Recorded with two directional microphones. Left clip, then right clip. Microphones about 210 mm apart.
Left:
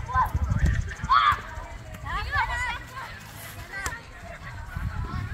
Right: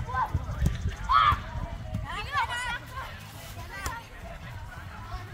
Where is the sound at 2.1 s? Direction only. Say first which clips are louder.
Left 3 dB; 60° right (ahead or behind).